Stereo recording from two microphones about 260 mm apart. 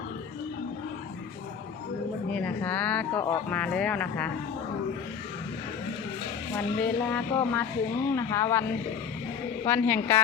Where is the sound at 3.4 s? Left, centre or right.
Centre.